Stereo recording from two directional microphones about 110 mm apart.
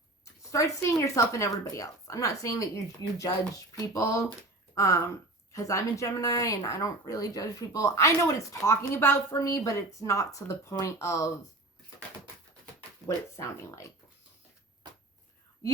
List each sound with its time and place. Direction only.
0.5 s speech: 25° left (ahead or behind)
13.3 s speech: 25° left (ahead or behind)